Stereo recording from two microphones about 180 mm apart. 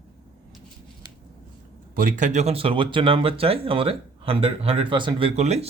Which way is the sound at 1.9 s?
50° right (ahead or behind).